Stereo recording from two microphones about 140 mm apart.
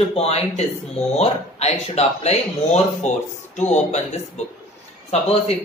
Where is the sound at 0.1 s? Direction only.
50° left (ahead or behind).